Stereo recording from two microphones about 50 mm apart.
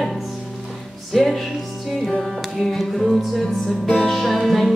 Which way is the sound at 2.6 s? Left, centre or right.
Centre.